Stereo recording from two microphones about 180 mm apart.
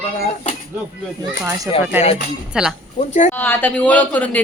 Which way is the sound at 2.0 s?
10° right (ahead or behind).